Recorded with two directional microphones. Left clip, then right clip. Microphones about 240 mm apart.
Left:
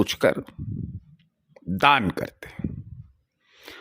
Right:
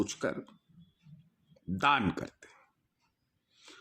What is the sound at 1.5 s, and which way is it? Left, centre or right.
Speech, left.